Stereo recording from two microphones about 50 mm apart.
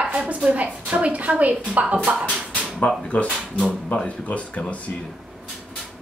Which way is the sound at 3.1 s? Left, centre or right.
Left.